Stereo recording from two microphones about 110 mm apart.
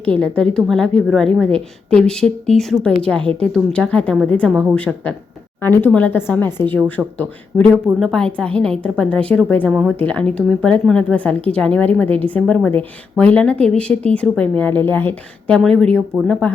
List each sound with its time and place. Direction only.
0.0 s a woman's voice: 10° left (ahead or behind)